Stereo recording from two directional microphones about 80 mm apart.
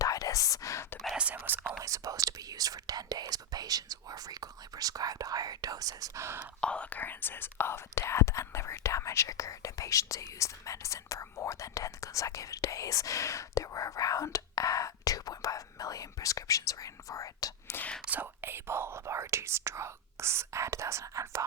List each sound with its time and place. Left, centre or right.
0.0 s whispering: left
1.1 s whispering: centre
1.4 s whispering: right
1.8 s speech: right
6.1 s speech: right
6.6 s speech: centre; by 17.7 s left
18.0 s speech: right